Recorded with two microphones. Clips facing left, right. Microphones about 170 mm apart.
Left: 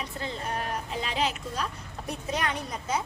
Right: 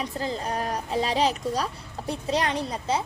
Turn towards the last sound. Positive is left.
turn(degrees=-30)  # may be behind; listen again after turning